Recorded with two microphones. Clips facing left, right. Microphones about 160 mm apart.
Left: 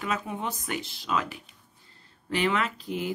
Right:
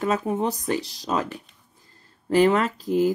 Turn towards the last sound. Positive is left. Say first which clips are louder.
# right 10 dB
turn(degrees=-40)  # may be behind; listen again after turning